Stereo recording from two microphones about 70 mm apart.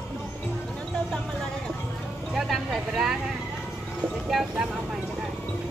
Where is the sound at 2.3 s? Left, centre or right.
Centre.